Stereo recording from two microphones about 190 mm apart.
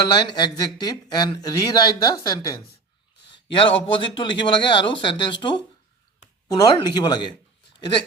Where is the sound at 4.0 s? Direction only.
25° left (ahead or behind).